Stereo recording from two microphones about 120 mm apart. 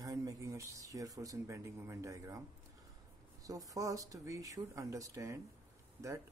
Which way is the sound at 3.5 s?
30° right (ahead or behind).